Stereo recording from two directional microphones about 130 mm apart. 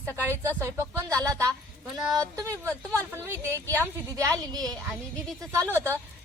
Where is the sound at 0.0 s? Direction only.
20° right (ahead or behind).